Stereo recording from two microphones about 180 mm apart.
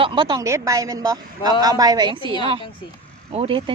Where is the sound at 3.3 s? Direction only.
35° right (ahead or behind).